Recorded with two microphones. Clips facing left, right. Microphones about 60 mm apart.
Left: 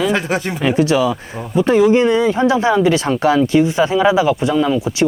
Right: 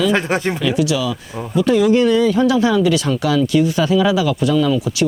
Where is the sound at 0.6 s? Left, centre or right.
Left.